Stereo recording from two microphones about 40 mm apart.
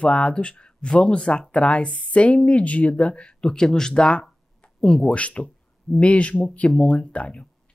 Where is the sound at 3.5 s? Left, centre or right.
Centre.